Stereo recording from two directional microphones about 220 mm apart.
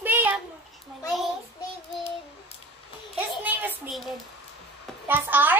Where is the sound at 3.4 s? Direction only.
5° right (ahead or behind).